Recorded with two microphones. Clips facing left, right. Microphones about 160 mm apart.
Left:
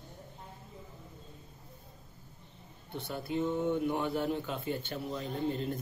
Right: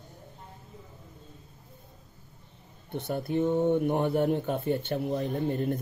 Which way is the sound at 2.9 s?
55° right (ahead or behind).